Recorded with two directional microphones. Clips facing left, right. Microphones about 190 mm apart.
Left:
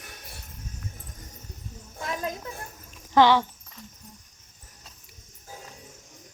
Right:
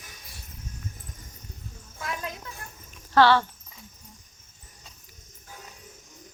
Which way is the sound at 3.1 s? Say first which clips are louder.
Left 1 dB; 15° left (ahead or behind).